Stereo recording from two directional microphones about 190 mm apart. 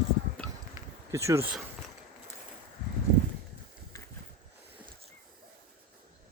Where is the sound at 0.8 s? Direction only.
15° right (ahead or behind).